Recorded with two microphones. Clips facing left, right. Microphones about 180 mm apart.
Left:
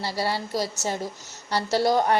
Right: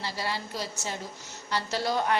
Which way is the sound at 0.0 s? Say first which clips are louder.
Left 6 dB; 35° left (ahead or behind).